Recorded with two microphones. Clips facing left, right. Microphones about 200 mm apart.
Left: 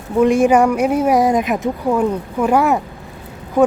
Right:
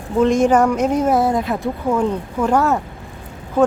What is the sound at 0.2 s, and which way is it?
Speech, 10° left (ahead or behind).